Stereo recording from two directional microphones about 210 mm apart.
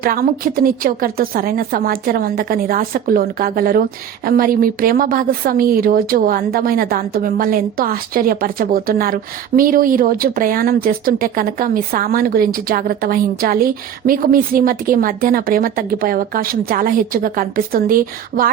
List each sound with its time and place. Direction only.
0.0 s a woman's voice: 45° right (ahead or behind)